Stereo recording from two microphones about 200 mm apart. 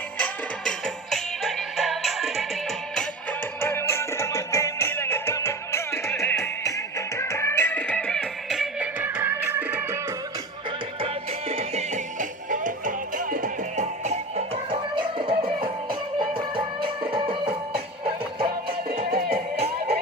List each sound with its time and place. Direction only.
0.2 s music: centre (ahead or behind)
11.0 s music: 30° right (ahead or behind)
19.3 s music: 30° right (ahead or behind)